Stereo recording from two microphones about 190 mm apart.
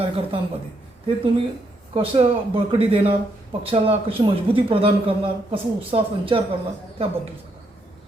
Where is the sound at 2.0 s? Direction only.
30° right (ahead or behind).